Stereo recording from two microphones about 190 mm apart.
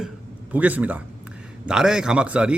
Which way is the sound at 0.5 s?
10° right (ahead or behind).